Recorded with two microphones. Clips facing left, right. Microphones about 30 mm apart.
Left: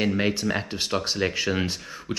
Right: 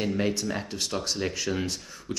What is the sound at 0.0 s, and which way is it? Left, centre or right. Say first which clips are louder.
Speech: left 3 dB; left.